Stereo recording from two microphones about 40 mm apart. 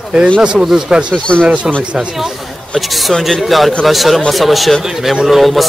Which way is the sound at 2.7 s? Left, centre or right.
Centre.